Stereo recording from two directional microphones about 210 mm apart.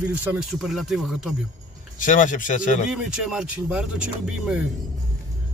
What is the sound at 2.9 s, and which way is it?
Speech, 5° right (ahead or behind).